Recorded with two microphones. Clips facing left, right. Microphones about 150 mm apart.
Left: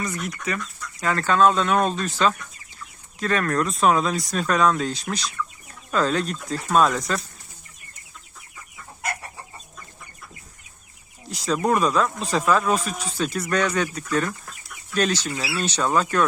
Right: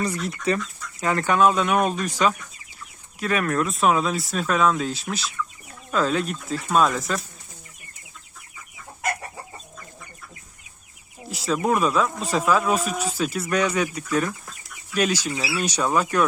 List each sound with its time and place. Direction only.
0.0 s speech: 30° right (ahead or behind)
1.0 s speech: 20° right (ahead or behind); by 7.2 s centre (ahead or behind)
11.3 s speech: 5° right (ahead or behind)